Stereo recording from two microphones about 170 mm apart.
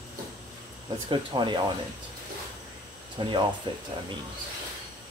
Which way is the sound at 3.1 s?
30° right (ahead or behind).